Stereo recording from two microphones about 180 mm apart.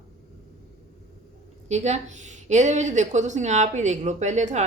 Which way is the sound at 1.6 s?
40° right (ahead or behind).